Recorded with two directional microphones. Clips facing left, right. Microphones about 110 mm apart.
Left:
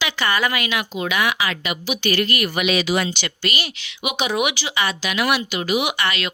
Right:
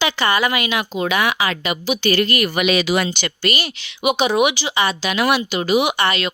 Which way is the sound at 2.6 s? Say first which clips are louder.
Right 2 dB; 60° right (ahead or behind).